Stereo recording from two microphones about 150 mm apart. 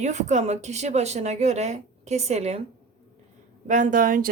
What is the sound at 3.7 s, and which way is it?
Speech, 60° right (ahead or behind).